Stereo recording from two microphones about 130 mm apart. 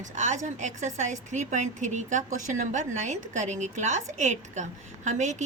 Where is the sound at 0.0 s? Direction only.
70° right (ahead or behind).